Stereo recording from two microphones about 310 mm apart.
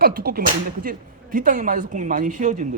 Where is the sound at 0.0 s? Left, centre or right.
Right.